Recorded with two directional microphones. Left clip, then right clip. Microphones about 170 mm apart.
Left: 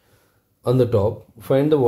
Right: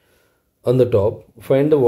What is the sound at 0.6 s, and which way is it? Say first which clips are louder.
Speech: right 3 dB; 20° right (ahead or behind).